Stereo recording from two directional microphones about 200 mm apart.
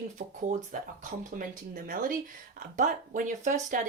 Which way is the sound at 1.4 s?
45° right (ahead or behind).